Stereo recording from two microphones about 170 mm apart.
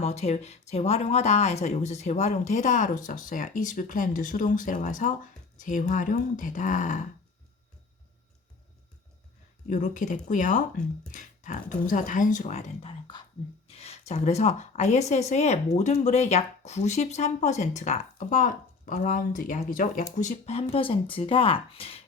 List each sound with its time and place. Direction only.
0.0 s speech: 40° left (ahead or behind)
9.6 s a woman's voice: 45° left (ahead or behind)
20.1 s a woman's voice: 40° left (ahead or behind)